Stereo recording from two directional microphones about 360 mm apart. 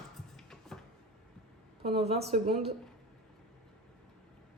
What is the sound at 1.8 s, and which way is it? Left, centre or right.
Speech, centre.